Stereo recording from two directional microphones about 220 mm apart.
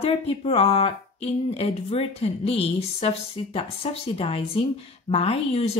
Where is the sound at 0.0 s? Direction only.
25° left (ahead or behind).